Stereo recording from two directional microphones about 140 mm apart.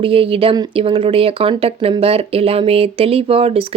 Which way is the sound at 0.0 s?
40° right (ahead or behind).